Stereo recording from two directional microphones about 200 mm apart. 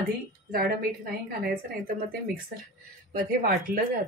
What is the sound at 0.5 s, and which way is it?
Speech, 45° right (ahead or behind).